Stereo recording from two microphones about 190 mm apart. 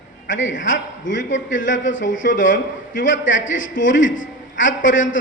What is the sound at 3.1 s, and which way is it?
A man's voice, 80° left.